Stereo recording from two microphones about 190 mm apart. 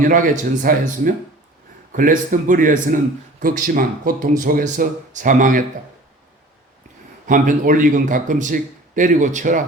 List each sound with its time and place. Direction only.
0.0 s a man's voice: 45° right (ahead or behind)
7.3 s a man's voice: 45° right (ahead or behind)